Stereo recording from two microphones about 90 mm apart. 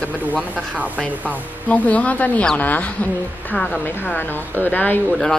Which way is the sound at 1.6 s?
15° left (ahead or behind).